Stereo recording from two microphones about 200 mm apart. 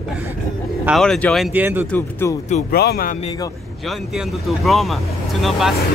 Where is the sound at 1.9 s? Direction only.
10° left (ahead or behind).